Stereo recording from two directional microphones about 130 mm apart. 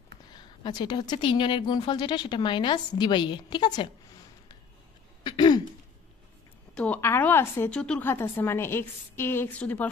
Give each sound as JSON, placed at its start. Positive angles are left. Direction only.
{"t": 0.3, "sound": "a woman's voice", "side_deg": 35}
{"t": 5.2, "sound": "throat clearing", "side_deg": 35}
{"t": 6.7, "sound": "a woman's voice", "side_deg": 10}
{"t": 7.8, "sound": "a woman's voice", "side_deg": 5}
{"t": 8.1, "sound": "a woman's voice", "side_deg": 15}